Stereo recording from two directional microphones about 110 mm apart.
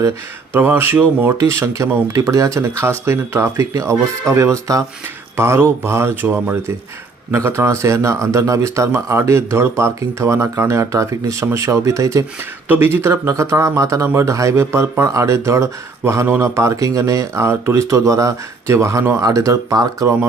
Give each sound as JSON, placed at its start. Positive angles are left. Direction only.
{"t": 0.5, "sound": "speech", "side_deg": -20}
{"t": 12.6, "sound": "speech", "side_deg": -20}